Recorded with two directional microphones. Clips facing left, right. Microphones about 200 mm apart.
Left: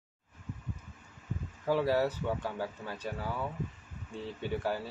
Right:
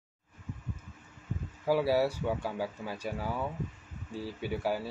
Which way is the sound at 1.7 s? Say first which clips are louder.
Right 2 dB; 10° right (ahead or behind).